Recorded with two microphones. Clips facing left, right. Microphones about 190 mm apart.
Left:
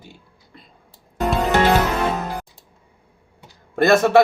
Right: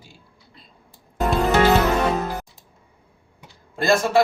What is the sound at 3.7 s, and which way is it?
Speech, 65° left (ahead or behind).